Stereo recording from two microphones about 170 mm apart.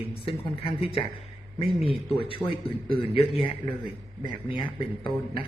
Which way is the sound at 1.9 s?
30° left (ahead or behind).